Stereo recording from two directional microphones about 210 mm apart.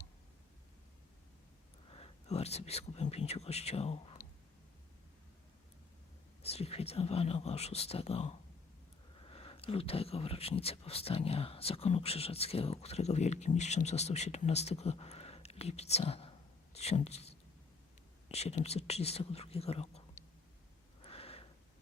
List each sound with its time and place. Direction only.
1.9 s speech: 30° left (ahead or behind)
6.4 s speech: 30° left (ahead or behind)
21.0 s a sound: 25° left (ahead or behind)